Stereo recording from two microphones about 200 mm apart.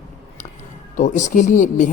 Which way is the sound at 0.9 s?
35° left (ahead or behind).